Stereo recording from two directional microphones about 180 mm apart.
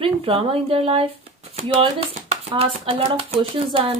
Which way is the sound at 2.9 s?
30° right (ahead or behind).